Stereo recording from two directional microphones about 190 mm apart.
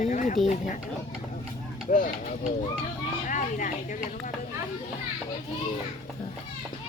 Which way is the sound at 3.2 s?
45° left (ahead or behind).